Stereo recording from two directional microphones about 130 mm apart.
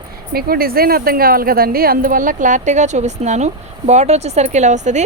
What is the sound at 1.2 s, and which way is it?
Speech, 90° right.